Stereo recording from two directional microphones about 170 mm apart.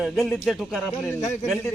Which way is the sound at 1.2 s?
45° left (ahead or behind).